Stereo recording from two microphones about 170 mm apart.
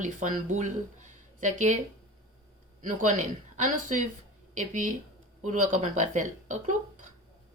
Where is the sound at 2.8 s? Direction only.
45° right (ahead or behind).